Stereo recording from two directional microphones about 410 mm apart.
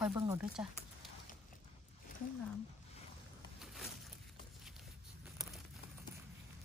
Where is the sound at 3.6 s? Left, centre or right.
Centre.